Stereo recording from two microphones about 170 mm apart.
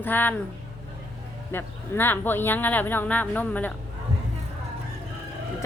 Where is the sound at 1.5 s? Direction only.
15° left (ahead or behind).